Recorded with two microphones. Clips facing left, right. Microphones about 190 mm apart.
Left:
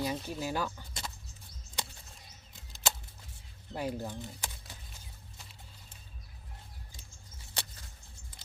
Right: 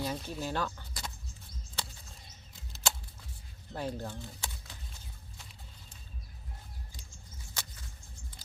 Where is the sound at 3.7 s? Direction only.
10° left (ahead or behind).